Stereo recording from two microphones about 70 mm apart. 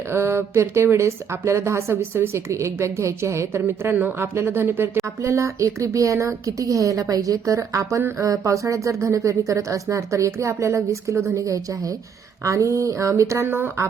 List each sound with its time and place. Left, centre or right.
0.1 s speech: right
13.5 s speech: right